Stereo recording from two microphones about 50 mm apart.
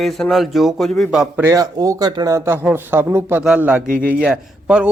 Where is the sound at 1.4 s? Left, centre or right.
Right.